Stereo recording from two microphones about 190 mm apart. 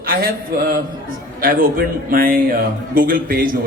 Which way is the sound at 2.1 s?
50° right (ahead or behind).